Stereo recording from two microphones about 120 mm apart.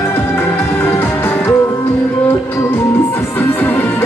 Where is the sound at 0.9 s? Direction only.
20° left (ahead or behind).